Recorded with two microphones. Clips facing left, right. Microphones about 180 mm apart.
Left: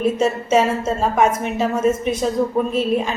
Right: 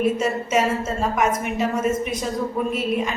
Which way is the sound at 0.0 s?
30° left (ahead or behind).